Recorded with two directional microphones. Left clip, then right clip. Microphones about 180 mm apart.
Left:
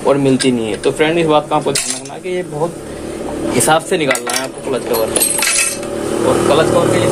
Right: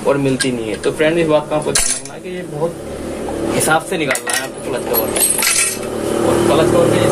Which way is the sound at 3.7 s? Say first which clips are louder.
Left 4 dB; 50° left (ahead or behind).